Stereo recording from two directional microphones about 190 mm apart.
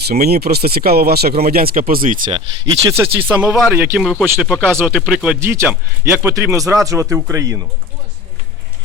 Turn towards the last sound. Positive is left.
turn(degrees=-15)  # may be behind; listen again after turning